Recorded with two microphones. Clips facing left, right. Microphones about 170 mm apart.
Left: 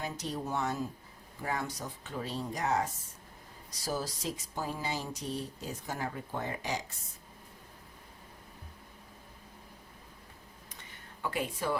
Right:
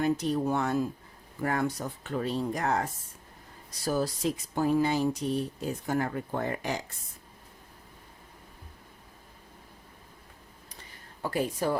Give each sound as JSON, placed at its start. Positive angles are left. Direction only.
{"t": 0.0, "sound": "speech", "side_deg": -60}
{"t": 11.2, "sound": "speech", "side_deg": -40}